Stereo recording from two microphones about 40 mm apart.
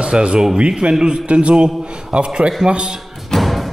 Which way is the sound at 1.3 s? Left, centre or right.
Right.